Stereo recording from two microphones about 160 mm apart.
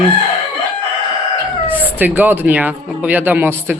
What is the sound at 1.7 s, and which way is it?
Speech, 10° right (ahead or behind).